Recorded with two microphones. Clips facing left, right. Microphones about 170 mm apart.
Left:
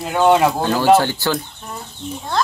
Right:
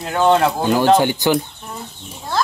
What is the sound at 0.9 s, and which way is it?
Speech, 15° right (ahead or behind).